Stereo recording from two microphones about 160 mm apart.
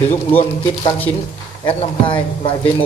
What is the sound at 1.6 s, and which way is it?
Speech, 35° left (ahead or behind).